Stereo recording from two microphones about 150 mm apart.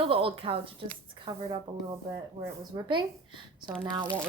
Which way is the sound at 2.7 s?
25° right (ahead or behind).